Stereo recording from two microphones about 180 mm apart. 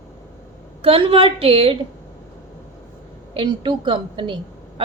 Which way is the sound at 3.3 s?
25° right (ahead or behind).